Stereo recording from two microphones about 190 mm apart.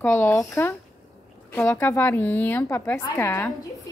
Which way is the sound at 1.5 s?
10° left (ahead or behind).